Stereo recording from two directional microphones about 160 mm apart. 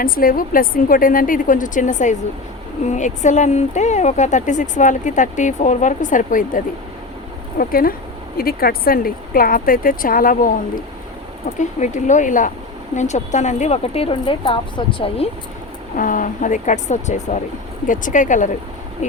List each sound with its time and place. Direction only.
0.0 s speech: 65° left (ahead or behind)
7.6 s speech: 65° left (ahead or behind)
11.4 s a woman's voice: 45° left (ahead or behind)
16.0 s speech: 55° left (ahead or behind)